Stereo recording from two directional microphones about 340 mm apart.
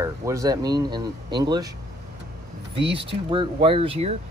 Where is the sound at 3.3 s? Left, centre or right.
Centre.